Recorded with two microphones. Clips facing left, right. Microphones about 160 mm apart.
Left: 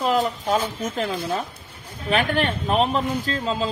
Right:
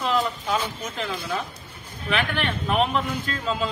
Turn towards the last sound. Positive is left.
turn(degrees=30)  # may be behind; listen again after turning